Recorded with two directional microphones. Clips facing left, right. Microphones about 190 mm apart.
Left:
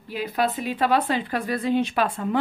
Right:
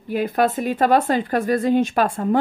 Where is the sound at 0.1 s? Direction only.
50° right (ahead or behind).